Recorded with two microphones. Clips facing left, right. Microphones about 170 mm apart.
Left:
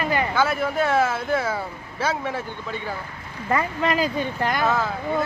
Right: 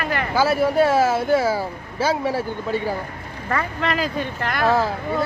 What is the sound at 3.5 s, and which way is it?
Speech, 10° left (ahead or behind).